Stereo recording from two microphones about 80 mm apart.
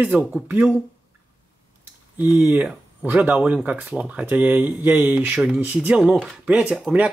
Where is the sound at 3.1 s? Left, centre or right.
Centre.